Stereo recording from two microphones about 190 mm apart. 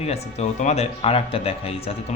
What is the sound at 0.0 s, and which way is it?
Speech, 35° left (ahead or behind).